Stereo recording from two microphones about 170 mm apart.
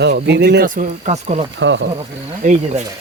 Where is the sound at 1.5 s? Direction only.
90° right.